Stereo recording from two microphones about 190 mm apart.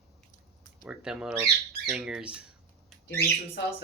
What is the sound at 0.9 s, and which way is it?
Speech, 5° right (ahead or behind).